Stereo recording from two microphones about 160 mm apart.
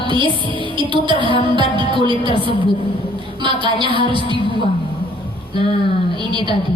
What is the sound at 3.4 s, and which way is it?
Speech, 30° right (ahead or behind).